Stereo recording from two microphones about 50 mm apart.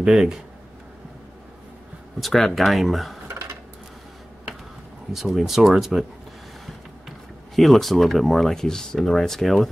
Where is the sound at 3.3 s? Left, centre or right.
Right.